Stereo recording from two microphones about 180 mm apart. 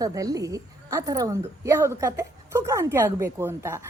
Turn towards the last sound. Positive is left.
turn(degrees=-15)  # may be behind; listen again after turning